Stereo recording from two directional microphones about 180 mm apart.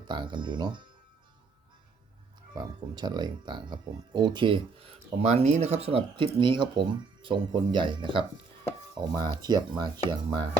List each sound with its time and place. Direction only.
0.1 s speech: 25° right (ahead or behind)
2.6 s speech: 25° right (ahead or behind)